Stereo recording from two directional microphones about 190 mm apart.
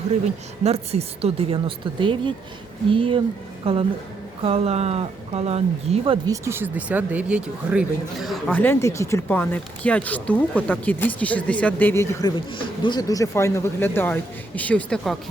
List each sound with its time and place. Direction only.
0.6 s speech: 35° right (ahead or behind)
6.2 s speech: 15° right (ahead or behind); by 15.2 s centre (ahead or behind)